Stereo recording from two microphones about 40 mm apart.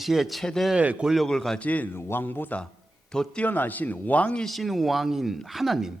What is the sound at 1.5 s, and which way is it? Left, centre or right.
Speech, left.